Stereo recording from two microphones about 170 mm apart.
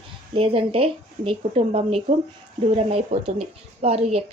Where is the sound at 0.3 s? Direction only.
35° right (ahead or behind).